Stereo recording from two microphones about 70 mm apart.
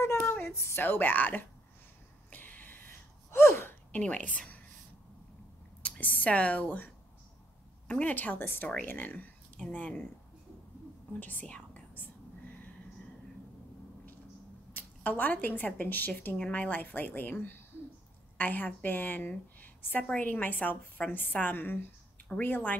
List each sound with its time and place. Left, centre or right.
0.0 s a sound: left
0.4 s a woman's voice: left
2.3 s gasp: left
3.9 s a woman's voice: centre
5.8 s speech: left
7.9 s a woman's voice: left
11.1 s whispering: left
14.7 s a woman's voice: left